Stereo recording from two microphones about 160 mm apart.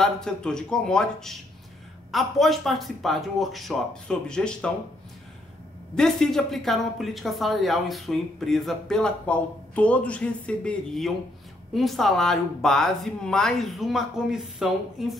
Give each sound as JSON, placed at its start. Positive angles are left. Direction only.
{"t": 0.0, "sound": "a woman's voice", "side_deg": 5}
{"t": 5.9, "sound": "a woman's voice", "side_deg": 5}